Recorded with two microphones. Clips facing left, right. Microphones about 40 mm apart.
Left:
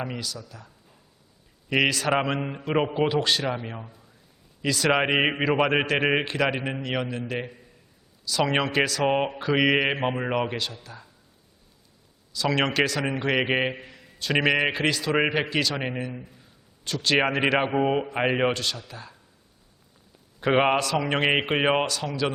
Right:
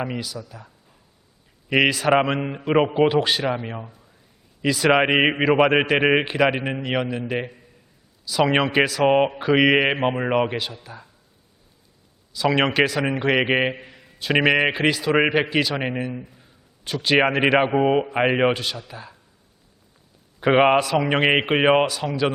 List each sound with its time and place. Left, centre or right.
0.0 s a man's voice: centre
1.7 s a man's voice: centre
12.3 s a man's voice: centre
20.4 s a man's voice: centre